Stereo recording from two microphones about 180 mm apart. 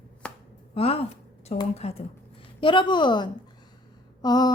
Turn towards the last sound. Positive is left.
turn(degrees=20)  # may be behind; listen again after turning